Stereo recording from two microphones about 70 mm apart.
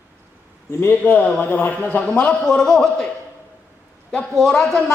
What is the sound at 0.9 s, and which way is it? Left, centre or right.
Speech, left.